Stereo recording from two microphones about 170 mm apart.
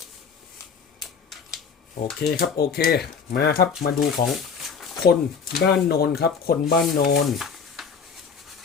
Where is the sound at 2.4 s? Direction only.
65° left (ahead or behind).